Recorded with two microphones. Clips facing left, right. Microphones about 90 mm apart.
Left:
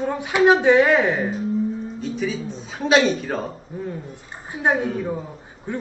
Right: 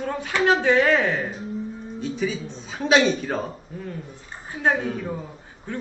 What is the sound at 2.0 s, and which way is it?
A man's voice, centre (ahead or behind).